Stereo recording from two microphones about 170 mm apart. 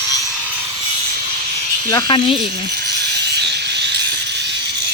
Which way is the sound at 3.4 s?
80° right.